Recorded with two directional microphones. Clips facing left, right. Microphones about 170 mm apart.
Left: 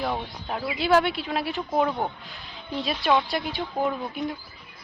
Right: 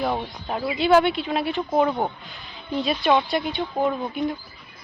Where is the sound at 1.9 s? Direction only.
20° right (ahead or behind).